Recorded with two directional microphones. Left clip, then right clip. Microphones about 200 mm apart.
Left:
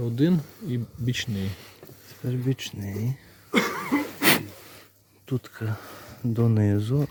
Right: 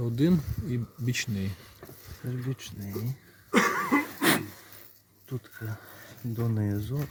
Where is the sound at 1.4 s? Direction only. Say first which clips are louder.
Left 3 dB; 40° left (ahead or behind).